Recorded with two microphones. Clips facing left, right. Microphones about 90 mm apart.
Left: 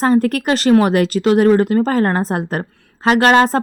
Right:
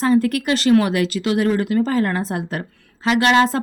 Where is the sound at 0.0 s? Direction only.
50° left (ahead or behind).